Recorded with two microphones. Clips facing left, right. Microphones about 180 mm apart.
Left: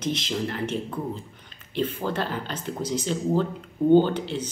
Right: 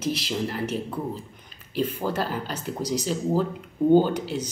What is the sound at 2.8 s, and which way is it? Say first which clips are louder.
Speech: right 1 dB; 35° right (ahead or behind).